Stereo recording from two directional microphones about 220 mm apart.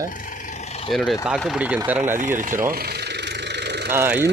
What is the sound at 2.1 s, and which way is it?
Engine, 35° right (ahead or behind).